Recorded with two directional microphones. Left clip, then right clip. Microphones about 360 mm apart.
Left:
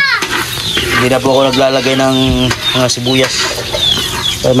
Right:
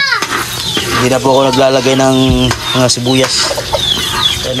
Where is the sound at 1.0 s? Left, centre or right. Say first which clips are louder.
Right 2 dB; centre.